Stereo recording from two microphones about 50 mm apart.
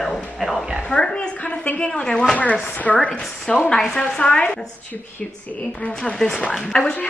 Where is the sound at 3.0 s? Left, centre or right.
Centre.